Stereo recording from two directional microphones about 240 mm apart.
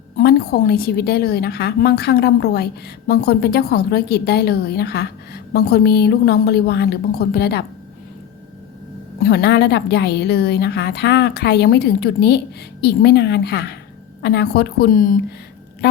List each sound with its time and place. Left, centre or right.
0.2 s a woman's voice: left
9.2 s a woman's voice: left